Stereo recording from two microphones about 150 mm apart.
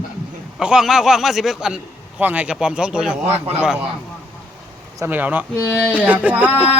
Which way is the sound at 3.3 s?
45° right (ahead or behind).